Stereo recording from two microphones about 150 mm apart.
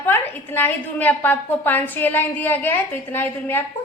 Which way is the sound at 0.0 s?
15° left (ahead or behind).